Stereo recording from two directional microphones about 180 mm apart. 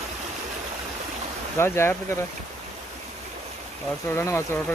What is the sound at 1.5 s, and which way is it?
Speech, 15° left (ahead or behind).